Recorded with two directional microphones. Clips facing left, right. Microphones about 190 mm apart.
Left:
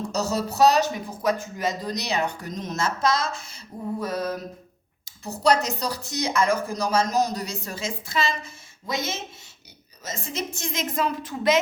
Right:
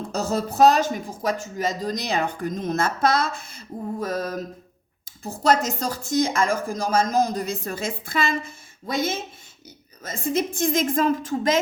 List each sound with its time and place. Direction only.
0.0 s speech: 55° right (ahead or behind)
4.0 s speech: 45° right (ahead or behind)